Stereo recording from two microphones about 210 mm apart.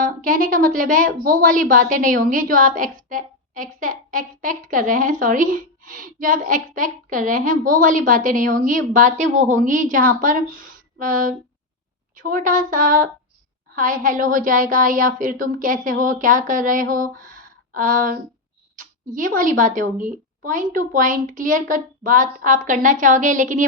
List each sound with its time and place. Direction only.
0.0 s a woman's voice: 40° right (ahead or behind)
17.2 s a sound: 40° right (ahead or behind)
19.1 s a woman's voice: 40° right (ahead or behind)